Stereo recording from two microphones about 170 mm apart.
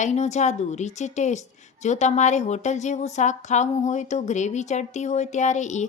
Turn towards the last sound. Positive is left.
turn(degrees=45)  # may be behind; listen again after turning